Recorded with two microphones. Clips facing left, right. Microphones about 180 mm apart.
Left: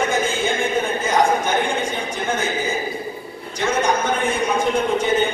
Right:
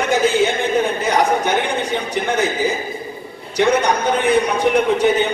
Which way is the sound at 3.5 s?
70° right (ahead or behind).